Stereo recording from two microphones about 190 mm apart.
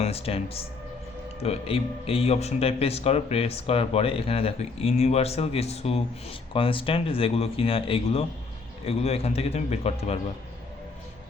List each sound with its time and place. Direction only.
0.0 s speech: 30° left (ahead or behind)